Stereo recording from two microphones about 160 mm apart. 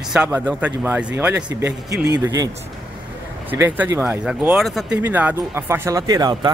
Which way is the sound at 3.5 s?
10° right (ahead or behind).